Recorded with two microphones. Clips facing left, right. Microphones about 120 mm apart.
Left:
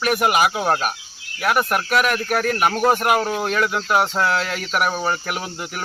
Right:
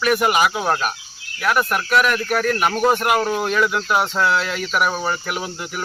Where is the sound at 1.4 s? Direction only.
45° left (ahead or behind).